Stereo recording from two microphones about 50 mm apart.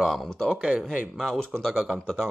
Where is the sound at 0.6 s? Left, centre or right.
Right.